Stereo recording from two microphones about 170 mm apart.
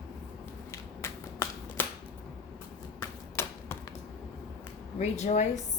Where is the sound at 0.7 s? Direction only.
20° left (ahead or behind).